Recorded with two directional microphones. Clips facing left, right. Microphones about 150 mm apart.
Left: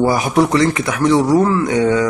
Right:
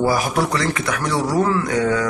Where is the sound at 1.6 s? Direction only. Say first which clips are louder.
Left 4 dB; 20° left (ahead or behind).